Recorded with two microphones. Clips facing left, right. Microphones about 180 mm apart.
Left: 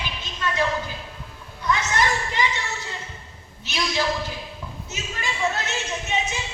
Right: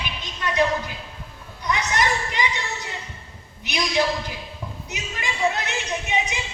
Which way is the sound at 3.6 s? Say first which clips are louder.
Right 2 dB; 15° right (ahead or behind).